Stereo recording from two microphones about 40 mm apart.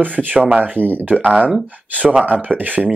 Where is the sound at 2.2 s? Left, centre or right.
Right.